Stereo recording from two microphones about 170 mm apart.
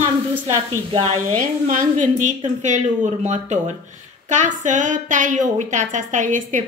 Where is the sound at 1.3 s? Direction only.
55° right (ahead or behind).